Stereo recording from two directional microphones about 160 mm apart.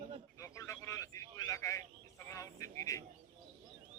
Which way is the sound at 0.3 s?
20° left (ahead or behind).